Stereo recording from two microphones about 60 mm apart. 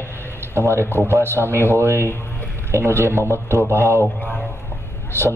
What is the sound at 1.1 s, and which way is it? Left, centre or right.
A man's voice, right.